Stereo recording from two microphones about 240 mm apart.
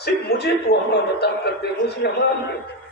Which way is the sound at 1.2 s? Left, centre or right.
Left.